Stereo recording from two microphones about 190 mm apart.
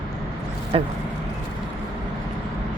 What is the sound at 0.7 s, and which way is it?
Speech, 30° right (ahead or behind).